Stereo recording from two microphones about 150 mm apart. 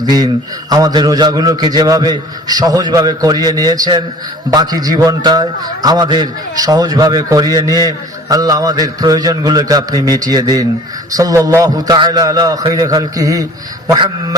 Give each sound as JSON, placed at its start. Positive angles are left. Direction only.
{"t": 0.0, "sound": "a man's voice", "side_deg": -25}